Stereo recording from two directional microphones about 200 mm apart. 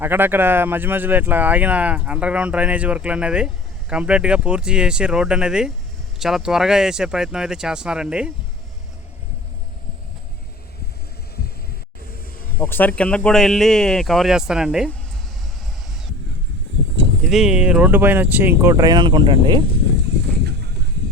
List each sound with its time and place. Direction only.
0.0 s speech: 10° right (ahead or behind)
12.5 s speech: 10° left (ahead or behind)
17.2 s speech: centre (ahead or behind); by 19.6 s 20° right (ahead or behind)
20.4 s a sound: 55° right (ahead or behind)